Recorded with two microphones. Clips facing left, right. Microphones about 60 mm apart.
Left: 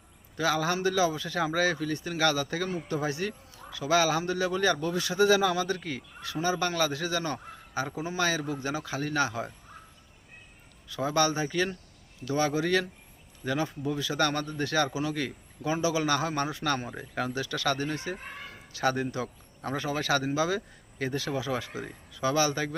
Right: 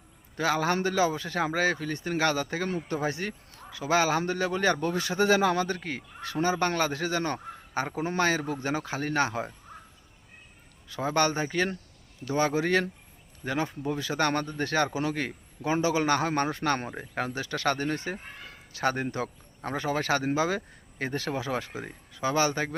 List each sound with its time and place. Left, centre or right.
0.3 s a man's voice: right
10.8 s speech: right